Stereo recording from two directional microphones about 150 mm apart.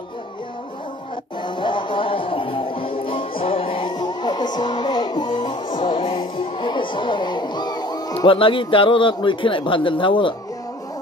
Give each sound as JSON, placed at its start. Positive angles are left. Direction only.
{"t": 1.4, "sound": "music", "side_deg": 30}